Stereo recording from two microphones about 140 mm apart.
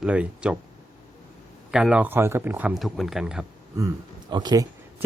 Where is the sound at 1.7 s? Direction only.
10° right (ahead or behind).